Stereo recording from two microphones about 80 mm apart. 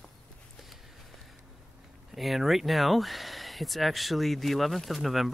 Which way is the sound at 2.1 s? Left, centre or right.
Centre.